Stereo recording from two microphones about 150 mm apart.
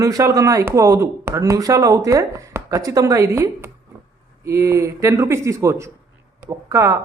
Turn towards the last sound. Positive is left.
turn(degrees=-20)  # may be behind; listen again after turning